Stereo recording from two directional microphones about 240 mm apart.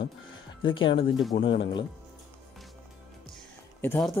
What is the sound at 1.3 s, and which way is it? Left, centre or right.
Speech, left.